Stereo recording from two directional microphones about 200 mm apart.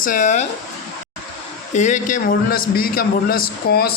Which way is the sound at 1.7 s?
35° left (ahead or behind).